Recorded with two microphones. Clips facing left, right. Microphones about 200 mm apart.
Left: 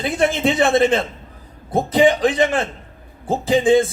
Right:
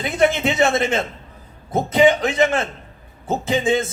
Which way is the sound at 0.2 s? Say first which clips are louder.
Right 1 dB; 30° left (ahead or behind).